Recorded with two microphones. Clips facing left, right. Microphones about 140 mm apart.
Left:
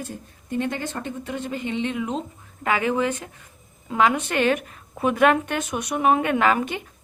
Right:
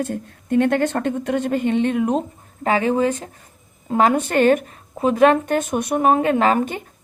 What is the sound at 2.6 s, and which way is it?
A woman's voice, 35° right (ahead or behind).